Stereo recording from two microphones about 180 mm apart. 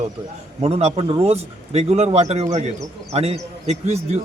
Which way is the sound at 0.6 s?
35° right (ahead or behind).